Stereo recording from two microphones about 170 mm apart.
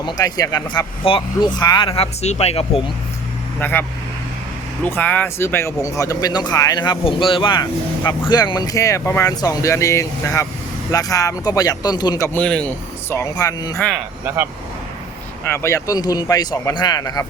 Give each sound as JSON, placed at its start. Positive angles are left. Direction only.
{"t": 0.0, "sound": "speech", "side_deg": 20}
{"t": 3.6, "sound": "speech", "side_deg": 10}
{"t": 4.9, "sound": "speech", "side_deg": 10}
{"t": 12.4, "sound": "speech", "side_deg": 5}
{"t": 13.7, "sound": "speech", "side_deg": 0}
{"t": 15.4, "sound": "speech", "side_deg": 15}